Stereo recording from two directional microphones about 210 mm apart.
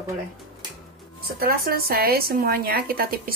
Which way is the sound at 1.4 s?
45° right (ahead or behind).